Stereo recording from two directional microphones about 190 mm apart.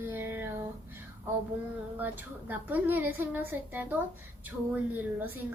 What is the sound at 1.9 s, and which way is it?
A woman's voice, 10° right (ahead or behind).